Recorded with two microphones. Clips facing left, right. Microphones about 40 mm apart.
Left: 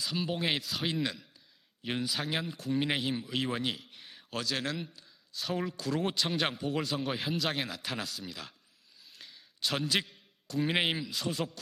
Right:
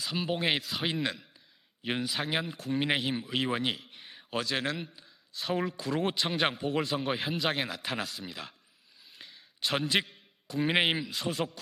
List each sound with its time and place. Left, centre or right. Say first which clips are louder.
0.0 s a man's voice: right 2 dB; centre